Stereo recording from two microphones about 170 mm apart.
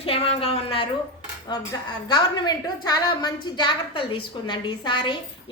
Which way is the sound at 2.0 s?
25° left (ahead or behind).